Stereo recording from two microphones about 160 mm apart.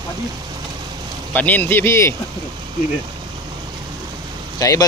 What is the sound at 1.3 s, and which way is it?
Speech, 10° left (ahead or behind).